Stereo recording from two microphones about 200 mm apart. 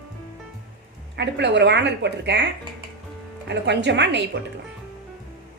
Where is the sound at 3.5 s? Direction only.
60° right (ahead or behind).